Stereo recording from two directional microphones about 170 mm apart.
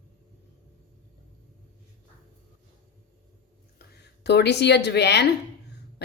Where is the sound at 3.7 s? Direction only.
80° left.